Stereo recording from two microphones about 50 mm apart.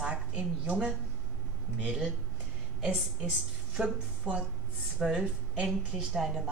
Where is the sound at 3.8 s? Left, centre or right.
Right.